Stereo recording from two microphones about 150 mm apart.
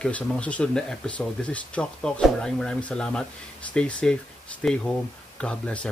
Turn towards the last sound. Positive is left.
turn(degrees=5)  # may be behind; listen again after turning